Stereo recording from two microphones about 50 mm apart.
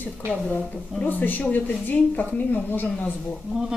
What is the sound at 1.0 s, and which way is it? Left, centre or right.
Speech, left.